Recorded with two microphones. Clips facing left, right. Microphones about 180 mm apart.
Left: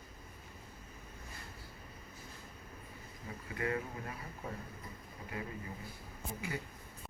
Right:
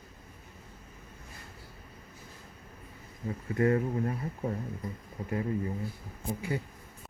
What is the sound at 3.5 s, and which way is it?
Speech, 40° right (ahead or behind).